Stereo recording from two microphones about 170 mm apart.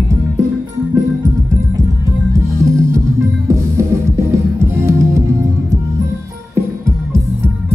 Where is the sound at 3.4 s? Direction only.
15° right (ahead or behind).